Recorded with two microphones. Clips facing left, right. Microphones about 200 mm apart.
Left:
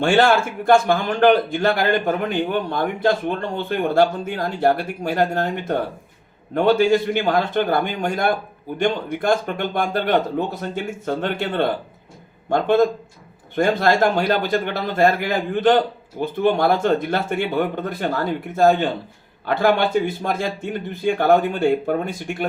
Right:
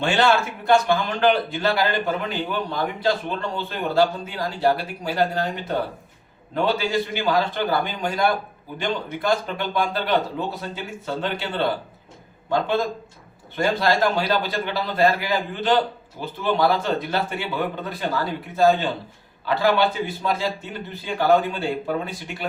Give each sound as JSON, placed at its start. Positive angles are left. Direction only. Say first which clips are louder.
{"t": 0.0, "sound": "a man's voice", "louder": "left 4 dB", "side_deg": 50}